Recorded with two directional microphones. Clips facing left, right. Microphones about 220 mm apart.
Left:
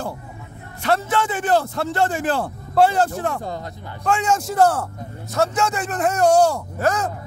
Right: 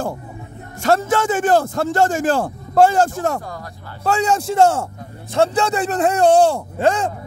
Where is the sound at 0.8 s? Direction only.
45° right (ahead or behind); by 7.1 s 30° right (ahead or behind).